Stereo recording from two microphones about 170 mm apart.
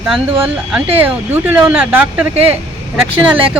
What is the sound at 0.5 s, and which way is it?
Speech, 10° right (ahead or behind).